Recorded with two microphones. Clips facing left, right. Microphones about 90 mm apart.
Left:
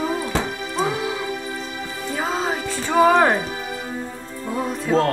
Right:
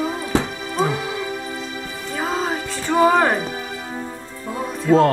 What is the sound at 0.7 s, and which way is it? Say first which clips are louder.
Music: right 2 dB; centre (ahead or behind).